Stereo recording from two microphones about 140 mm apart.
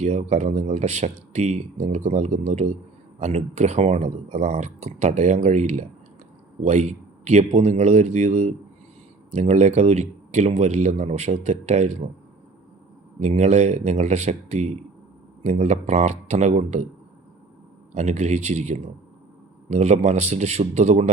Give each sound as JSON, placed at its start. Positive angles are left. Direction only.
{"t": 0.0, "sound": "speech", "side_deg": -55}
{"t": 13.1, "sound": "speech", "side_deg": -55}
{"t": 17.9, "sound": "speech", "side_deg": -55}